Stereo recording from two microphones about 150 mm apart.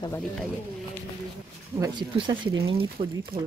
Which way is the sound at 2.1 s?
35° right (ahead or behind).